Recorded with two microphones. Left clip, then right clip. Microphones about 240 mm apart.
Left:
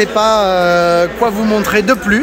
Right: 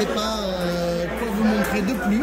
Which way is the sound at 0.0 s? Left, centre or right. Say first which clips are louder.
Left 13 dB; centre.